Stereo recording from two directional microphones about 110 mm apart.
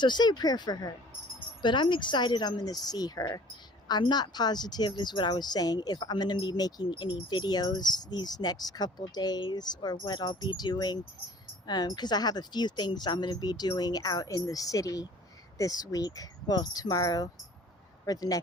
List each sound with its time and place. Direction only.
0.0 s a woman's voice: 40° left (ahead or behind)